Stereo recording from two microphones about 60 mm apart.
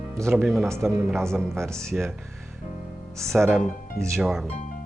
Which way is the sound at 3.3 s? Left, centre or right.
Centre.